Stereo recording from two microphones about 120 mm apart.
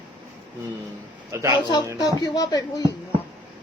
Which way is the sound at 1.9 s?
35° left (ahead or behind).